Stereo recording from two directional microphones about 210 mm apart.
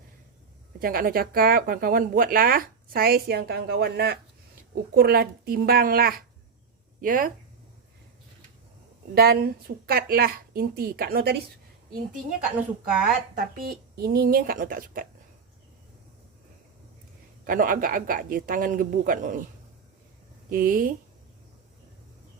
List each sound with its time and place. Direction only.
0.8 s a man's voice: 45° right (ahead or behind)
9.1 s speech: 50° right (ahead or behind)
13.3 s speech: 45° right (ahead or behind)
17.4 s a man's voice: 40° right (ahead or behind)
20.5 s a man's voice: 40° right (ahead or behind)